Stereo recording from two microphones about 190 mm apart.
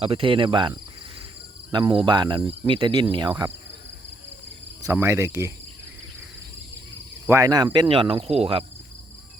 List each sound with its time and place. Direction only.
0.0 s speech: 30° right (ahead or behind)
1.7 s speech: 25° right (ahead or behind)
4.8 s speech: 15° right (ahead or behind)
7.3 s speech: 15° right (ahead or behind)